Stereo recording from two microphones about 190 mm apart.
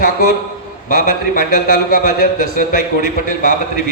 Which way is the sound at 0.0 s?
45° left (ahead or behind).